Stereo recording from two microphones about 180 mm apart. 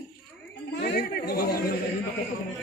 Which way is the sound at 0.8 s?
60° left (ahead or behind).